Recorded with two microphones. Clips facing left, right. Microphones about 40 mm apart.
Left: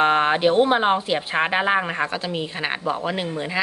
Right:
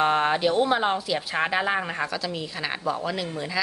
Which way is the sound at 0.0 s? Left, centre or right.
Left.